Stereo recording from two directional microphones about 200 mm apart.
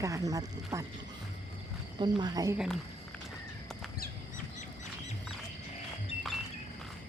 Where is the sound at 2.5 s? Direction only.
5° right (ahead or behind).